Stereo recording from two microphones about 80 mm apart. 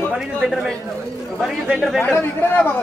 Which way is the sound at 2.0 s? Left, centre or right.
Left.